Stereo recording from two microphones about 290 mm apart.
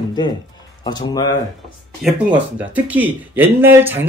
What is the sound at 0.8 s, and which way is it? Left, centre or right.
Speech, centre.